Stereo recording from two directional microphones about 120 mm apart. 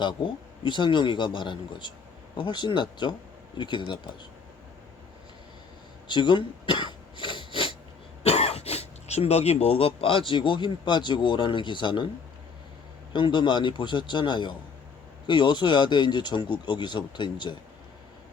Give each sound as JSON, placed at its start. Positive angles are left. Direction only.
{"t": 0.0, "sound": "speech", "side_deg": 40}
{"t": 6.1, "sound": "cough", "side_deg": 40}
{"t": 8.2, "sound": "speech", "side_deg": 60}
{"t": 13.1, "sound": "speech", "side_deg": 40}